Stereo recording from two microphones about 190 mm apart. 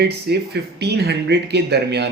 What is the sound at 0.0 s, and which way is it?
Speech, 60° right (ahead or behind).